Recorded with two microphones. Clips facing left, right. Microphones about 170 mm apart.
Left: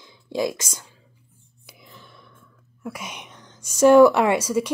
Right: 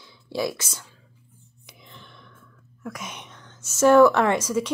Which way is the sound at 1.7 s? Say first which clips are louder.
Left 1 dB; 5° left (ahead or behind).